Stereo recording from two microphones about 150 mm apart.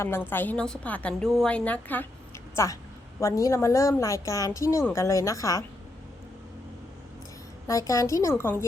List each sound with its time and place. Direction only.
0.3 s a woman's voice: 10° left (ahead or behind)
3.2 s a woman's voice: 20° left (ahead or behind)
7.7 s a woman's voice: 20° left (ahead or behind)